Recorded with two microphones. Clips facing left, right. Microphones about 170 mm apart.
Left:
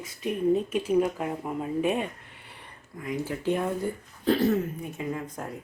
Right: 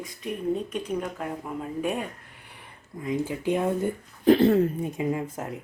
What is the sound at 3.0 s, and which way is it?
Speech, 15° right (ahead or behind).